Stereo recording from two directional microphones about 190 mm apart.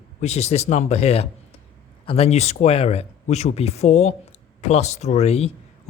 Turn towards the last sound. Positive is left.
turn(degrees=35)  # may be behind; listen again after turning